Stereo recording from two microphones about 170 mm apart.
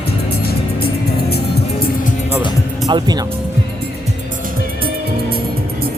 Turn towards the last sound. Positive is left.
turn(degrees=-60)  # may be behind; listen again after turning